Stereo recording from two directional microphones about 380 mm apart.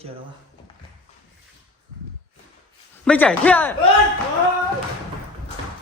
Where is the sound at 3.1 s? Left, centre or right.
Centre.